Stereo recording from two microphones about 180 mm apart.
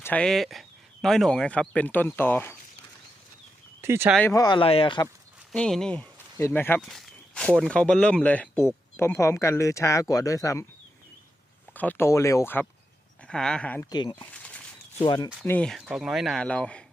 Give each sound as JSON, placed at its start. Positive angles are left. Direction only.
{"t": 0.0, "sound": "speech", "side_deg": 5}
{"t": 3.8, "sound": "speech", "side_deg": -15}
{"t": 4.3, "sound": "speech", "side_deg": 20}
{"t": 5.5, "sound": "speech", "side_deg": 5}
{"t": 11.7, "sound": "speech", "side_deg": 10}
{"t": 13.9, "sound": "speech", "side_deg": 25}
{"t": 14.3, "sound": "a sound", "side_deg": 10}
{"t": 15.0, "sound": "speech", "side_deg": 25}
{"t": 15.4, "sound": "speech", "side_deg": 5}